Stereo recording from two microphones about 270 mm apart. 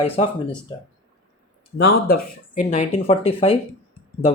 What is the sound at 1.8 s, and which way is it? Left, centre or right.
Speech, left.